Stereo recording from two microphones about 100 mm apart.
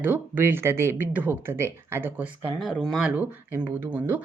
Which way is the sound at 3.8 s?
20° right (ahead or behind).